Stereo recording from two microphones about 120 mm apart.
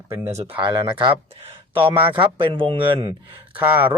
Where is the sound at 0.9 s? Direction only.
45° right (ahead or behind).